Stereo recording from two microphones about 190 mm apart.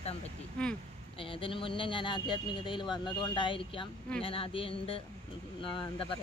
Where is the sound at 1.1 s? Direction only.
30° left (ahead or behind).